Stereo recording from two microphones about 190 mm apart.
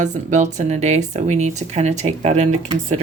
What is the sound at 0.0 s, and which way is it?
Speech, 40° right (ahead or behind).